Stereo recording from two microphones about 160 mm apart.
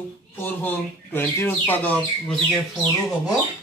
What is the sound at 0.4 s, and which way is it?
Speech, 10° left (ahead or behind).